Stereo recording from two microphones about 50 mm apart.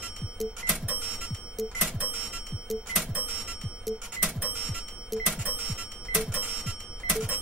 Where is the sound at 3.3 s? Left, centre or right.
Centre.